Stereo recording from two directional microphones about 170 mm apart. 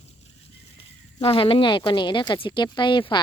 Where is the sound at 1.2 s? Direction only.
30° left (ahead or behind).